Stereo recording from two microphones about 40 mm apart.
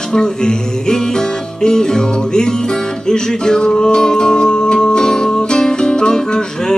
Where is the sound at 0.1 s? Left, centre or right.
Centre.